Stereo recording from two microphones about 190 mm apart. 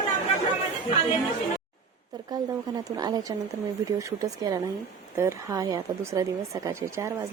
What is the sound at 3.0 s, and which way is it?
A woman's voice, 20° right (ahead or behind).